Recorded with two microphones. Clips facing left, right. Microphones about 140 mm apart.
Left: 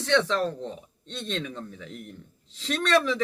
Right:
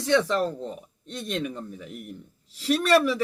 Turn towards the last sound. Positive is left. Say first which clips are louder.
# right 3 dB
turn(degrees=-10)  # may be behind; listen again after turning